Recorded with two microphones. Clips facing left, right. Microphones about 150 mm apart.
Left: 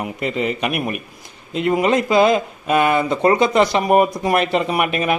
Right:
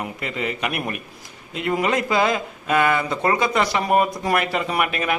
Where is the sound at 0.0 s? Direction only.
20° left (ahead or behind).